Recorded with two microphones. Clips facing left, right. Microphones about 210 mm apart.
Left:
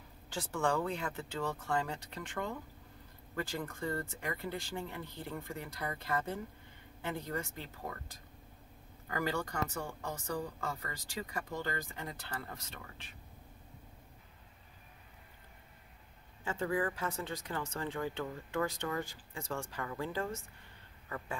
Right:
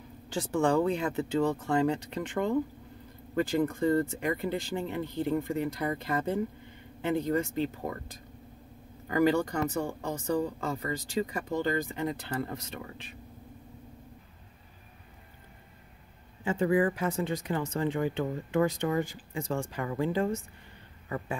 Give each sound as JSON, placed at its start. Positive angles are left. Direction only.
{"t": 0.3, "sound": "speech", "side_deg": -20}
{"t": 9.1, "sound": "speech", "side_deg": -20}
{"t": 16.4, "sound": "speech", "side_deg": -15}